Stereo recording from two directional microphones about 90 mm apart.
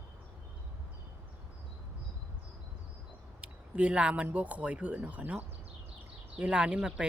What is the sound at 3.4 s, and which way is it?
Speech, 15° right (ahead or behind).